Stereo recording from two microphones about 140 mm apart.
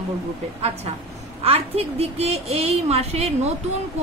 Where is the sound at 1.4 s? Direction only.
45° right (ahead or behind).